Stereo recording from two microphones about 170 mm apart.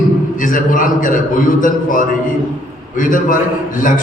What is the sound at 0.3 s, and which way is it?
Mantra, 50° left (ahead or behind).